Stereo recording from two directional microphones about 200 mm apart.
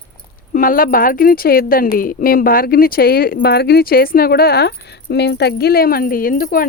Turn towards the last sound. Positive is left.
turn(degrees=45)  # may be behind; listen again after turning